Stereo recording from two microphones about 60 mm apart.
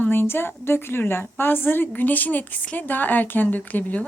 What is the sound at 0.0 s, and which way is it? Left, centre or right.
Speech, left.